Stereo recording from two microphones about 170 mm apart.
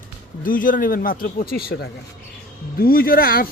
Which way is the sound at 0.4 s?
55° left (ahead or behind).